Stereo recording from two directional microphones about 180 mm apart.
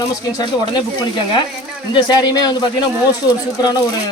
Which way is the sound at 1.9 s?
25° left (ahead or behind).